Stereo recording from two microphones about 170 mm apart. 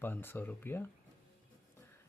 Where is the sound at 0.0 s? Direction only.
10° left (ahead or behind).